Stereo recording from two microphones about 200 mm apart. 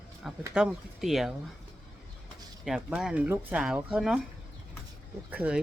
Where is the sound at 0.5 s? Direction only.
Centre (ahead or behind).